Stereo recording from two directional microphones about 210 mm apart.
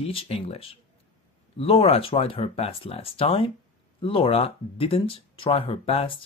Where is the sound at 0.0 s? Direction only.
30° left (ahead or behind).